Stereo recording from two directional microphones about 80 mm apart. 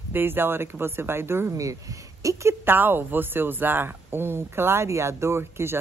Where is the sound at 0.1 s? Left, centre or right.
Right.